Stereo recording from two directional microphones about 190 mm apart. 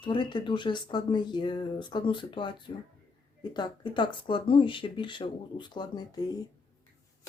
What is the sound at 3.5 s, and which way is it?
Speech, 25° left (ahead or behind).